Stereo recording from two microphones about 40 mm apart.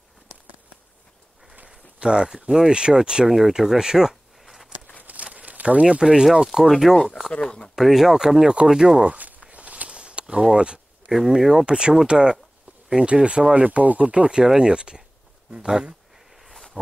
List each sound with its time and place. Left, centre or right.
1.5 s speech: right
3.3 s speech: centre
3.5 s a sound: centre
5.0 s a sound: right
5.9 s speech: right
6.4 s speech: centre
9.0 s walk: right
10.5 s speech: right
13.7 s speech: right
14.4 s speech: centre
16.8 s a sound: centre